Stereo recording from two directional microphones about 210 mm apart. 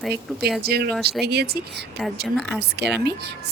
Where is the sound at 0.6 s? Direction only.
50° right (ahead or behind).